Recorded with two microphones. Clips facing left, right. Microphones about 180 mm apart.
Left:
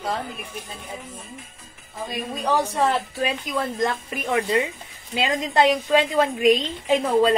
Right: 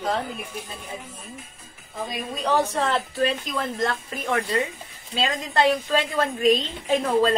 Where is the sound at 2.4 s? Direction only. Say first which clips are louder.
Left 1 dB; 10° left (ahead or behind).